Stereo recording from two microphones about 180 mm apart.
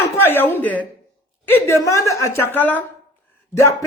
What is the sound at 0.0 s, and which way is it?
Speech, 10° left (ahead or behind).